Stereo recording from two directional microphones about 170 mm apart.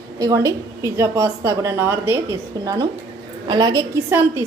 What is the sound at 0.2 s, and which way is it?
A woman's voice, 20° right (ahead or behind).